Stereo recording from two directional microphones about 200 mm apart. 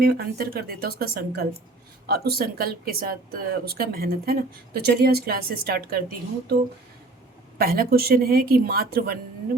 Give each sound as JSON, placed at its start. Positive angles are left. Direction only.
{"t": 0.0, "sound": "speech", "side_deg": -50}
{"t": 7.6, "sound": "speech", "side_deg": -50}